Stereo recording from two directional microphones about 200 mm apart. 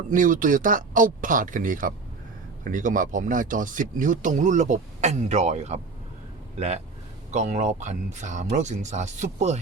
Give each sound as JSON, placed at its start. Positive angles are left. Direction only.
{"t": 0.1, "sound": "speech", "side_deg": -40}
{"t": 7.3, "sound": "speech", "side_deg": -35}